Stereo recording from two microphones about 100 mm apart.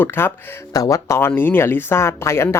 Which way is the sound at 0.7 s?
35° left (ahead or behind).